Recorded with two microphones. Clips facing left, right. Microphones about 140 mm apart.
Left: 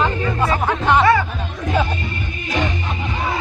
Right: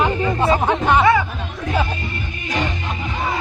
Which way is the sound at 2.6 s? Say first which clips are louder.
Left 1 dB; centre (ahead or behind).